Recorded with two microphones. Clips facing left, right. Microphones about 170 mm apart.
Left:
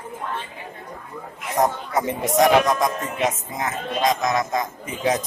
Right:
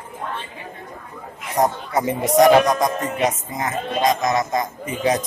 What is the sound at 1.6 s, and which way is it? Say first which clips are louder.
Speech: right 2 dB; centre (ahead or behind).